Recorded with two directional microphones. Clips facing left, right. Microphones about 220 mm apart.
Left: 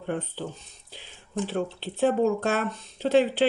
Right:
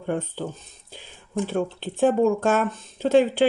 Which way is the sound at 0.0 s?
45° right (ahead or behind).